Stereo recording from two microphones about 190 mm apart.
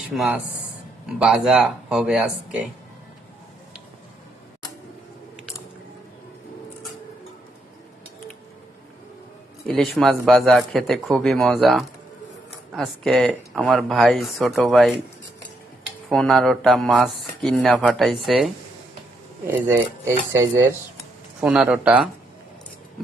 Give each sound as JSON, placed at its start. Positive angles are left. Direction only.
{"t": 0.0, "sound": "speech", "side_deg": -5}
{"t": 9.6, "sound": "speech", "side_deg": 0}
{"t": 16.0, "sound": "speech", "side_deg": 0}
{"t": 19.5, "sound": "speech", "side_deg": -10}
{"t": 21.4, "sound": "speech", "side_deg": -5}